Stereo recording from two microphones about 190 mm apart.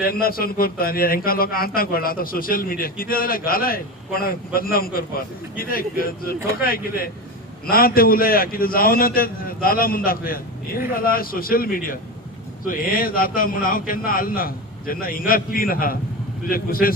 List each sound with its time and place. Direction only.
0.0 s a man's voice: 50° left (ahead or behind)